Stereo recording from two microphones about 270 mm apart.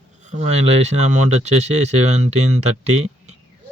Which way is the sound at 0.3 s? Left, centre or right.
Right.